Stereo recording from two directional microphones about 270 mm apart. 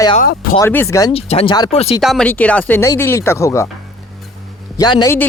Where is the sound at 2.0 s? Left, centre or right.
Centre.